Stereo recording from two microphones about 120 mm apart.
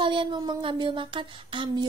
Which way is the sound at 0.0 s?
45° right (ahead or behind).